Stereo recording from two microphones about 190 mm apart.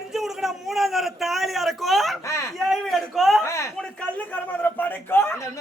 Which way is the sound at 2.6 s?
Centre (ahead or behind).